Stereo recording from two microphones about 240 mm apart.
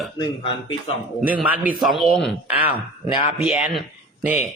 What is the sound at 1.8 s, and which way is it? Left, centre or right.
Speech, centre.